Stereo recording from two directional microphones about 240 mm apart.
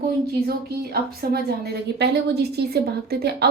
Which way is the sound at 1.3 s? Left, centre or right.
Right.